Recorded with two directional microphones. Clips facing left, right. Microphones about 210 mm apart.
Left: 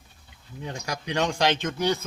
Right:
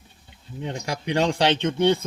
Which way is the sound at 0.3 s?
20° right (ahead or behind).